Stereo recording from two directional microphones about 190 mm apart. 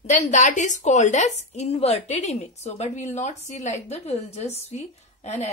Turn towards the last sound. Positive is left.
turn(degrees=35)  # may be behind; listen again after turning